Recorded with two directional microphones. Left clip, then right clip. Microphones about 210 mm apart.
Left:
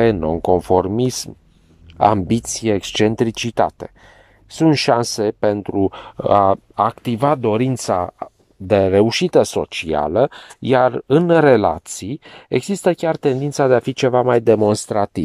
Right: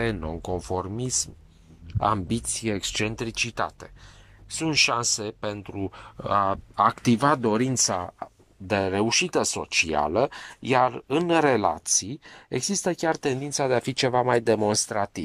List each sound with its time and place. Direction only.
0.0 s speech: 25° left (ahead or behind)
0.4 s speech: 40° left (ahead or behind); by 3.1 s 20° left (ahead or behind)
3.1 s speech: 30° left (ahead or behind)